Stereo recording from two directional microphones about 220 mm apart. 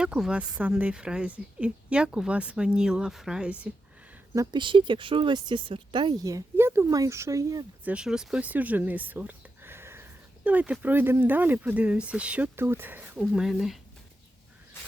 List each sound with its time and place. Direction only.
0.0 s speech: 5° right (ahead or behind)
4.4 s speech: 20° right (ahead or behind)
7.9 s speech: 5° right (ahead or behind)